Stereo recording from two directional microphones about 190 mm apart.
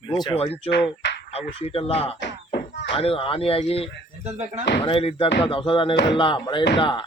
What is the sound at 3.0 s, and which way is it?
Speech, 30° left (ahead or behind).